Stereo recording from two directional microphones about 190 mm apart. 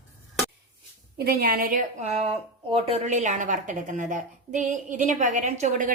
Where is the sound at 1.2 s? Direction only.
55° right (ahead or behind).